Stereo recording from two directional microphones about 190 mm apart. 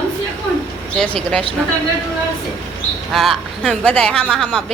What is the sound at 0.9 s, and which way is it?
Speech, 5° left (ahead or behind).